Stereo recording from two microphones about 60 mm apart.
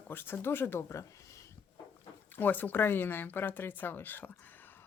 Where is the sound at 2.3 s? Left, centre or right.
Left.